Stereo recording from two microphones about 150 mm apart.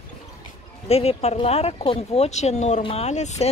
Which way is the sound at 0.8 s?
45° left (ahead or behind).